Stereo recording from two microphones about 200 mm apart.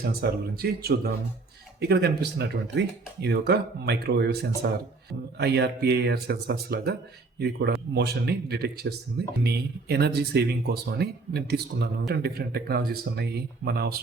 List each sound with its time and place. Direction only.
0.0 s speech: 50° right (ahead or behind)